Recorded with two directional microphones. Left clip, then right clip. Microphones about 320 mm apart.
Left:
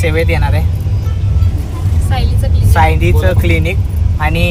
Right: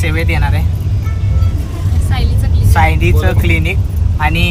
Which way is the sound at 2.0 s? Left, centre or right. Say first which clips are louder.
Left 3 dB; centre.